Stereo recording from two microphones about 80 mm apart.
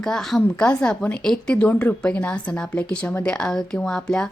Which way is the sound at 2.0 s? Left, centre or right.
Centre.